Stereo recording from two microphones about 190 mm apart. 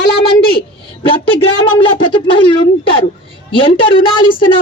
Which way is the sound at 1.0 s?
30° left (ahead or behind).